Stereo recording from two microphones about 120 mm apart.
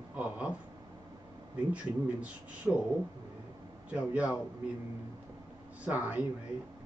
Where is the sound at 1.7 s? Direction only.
10° right (ahead or behind).